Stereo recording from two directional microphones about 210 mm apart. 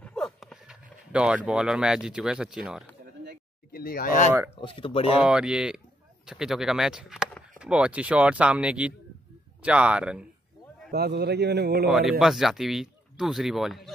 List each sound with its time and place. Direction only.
0.0 s a sound: 5° left (ahead or behind)
3.7 s speech: 45° left (ahead or behind)
4.6 s speech: 25° left (ahead or behind)
5.2 s speech: 5° right (ahead or behind)
10.9 s speech: 50° right (ahead or behind)
11.9 s speech: centre (ahead or behind)